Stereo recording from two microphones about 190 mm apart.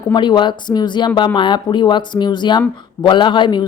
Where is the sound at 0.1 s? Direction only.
25° left (ahead or behind).